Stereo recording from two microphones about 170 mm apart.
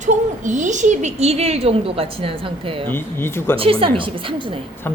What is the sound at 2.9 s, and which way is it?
Speech, 15° left (ahead or behind).